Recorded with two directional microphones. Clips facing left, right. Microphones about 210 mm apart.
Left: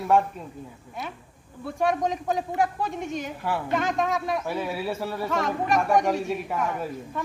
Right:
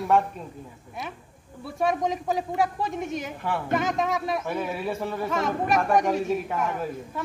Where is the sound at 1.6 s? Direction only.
Centre (ahead or behind).